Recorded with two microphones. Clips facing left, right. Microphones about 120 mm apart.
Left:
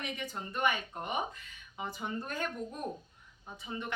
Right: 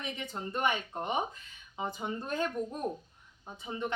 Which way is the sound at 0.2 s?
25° right (ahead or behind).